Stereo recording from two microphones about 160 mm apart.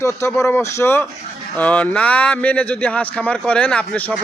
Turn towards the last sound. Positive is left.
turn(degrees=10)  # may be behind; listen again after turning